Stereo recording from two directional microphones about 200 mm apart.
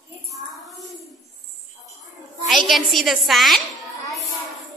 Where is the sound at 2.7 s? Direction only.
Centre (ahead or behind).